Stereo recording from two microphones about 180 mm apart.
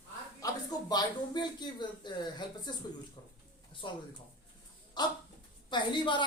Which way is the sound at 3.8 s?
25° left (ahead or behind).